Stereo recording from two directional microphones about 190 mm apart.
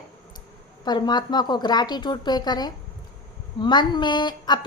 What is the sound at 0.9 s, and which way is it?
A woman's voice, 20° left (ahead or behind).